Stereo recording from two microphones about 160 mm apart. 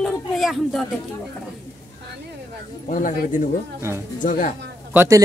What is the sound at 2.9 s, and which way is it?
Speech, 50° left (ahead or behind).